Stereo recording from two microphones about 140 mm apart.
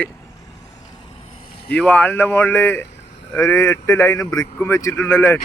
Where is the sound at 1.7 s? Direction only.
10° left (ahead or behind).